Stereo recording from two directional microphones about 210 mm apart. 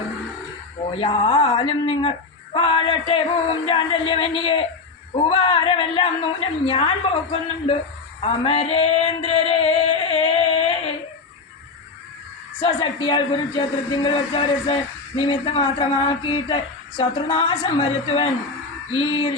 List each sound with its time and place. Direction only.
0.9 s speech: 25° left (ahead or behind)
8.2 s a sound: 25° left (ahead or behind)
12.5 s speech: 20° left (ahead or behind)